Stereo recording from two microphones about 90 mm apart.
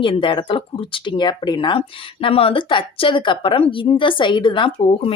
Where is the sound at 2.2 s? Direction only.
85° left.